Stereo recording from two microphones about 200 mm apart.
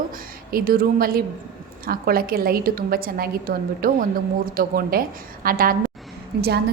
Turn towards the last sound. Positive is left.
turn(degrees=-55)  # may be behind; listen again after turning